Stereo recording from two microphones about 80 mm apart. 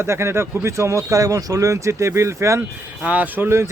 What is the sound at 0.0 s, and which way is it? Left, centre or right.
Speech, right.